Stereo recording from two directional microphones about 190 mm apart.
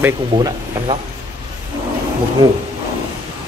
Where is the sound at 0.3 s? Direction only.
25° right (ahead or behind).